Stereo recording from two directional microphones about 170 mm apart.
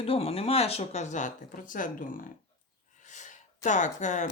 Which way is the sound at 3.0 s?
45° left (ahead or behind).